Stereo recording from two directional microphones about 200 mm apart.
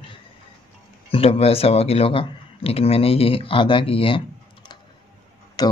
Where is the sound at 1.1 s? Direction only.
30° left (ahead or behind).